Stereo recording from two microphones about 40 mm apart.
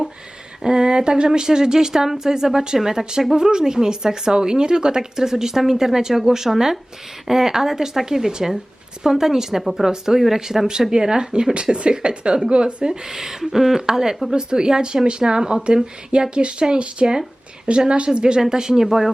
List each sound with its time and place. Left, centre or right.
0.6 s speech: centre
11.5 s speech: right
12.9 s speech: centre